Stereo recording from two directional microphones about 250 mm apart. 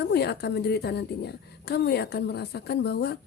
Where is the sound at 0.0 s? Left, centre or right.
Left.